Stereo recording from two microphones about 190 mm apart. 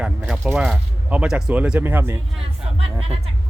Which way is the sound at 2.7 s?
30° right (ahead or behind).